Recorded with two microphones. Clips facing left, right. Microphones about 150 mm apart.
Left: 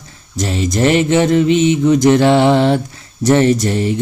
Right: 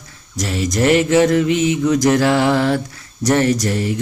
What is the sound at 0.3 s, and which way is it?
Speech, 25° left (ahead or behind).